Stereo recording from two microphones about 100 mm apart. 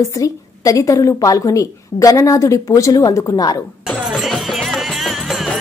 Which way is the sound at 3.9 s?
Centre (ahead or behind).